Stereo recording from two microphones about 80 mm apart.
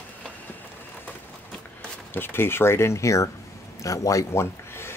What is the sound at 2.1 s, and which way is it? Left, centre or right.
Speech, left.